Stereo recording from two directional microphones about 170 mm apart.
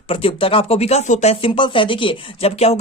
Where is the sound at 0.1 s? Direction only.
30° left (ahead or behind).